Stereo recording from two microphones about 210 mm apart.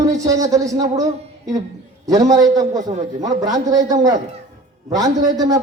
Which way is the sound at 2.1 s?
15° right (ahead or behind).